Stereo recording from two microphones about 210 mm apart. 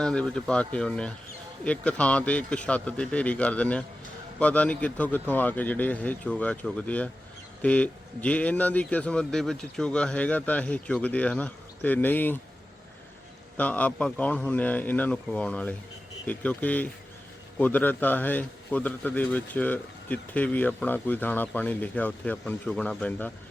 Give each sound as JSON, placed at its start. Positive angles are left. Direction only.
{"t": 0.0, "sound": "a man's voice", "side_deg": 5}
{"t": 13.6, "sound": "a man's voice", "side_deg": 5}